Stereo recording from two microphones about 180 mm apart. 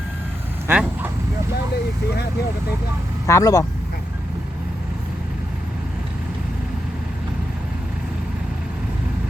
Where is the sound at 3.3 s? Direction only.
15° left (ahead or behind).